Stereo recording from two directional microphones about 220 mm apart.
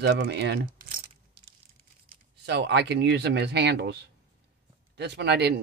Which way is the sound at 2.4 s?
50° right (ahead or behind).